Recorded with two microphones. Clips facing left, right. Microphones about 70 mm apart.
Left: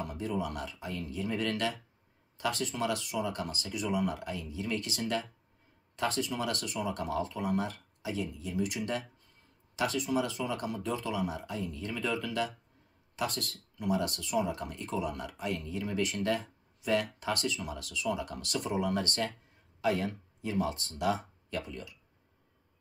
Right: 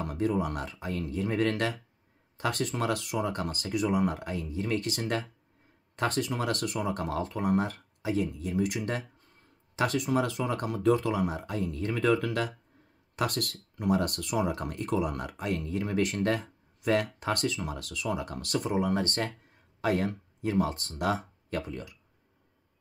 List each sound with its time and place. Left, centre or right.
0.0 s speech: right
18.7 s speech: right
21.0 s a sound: right
21.5 s speech: right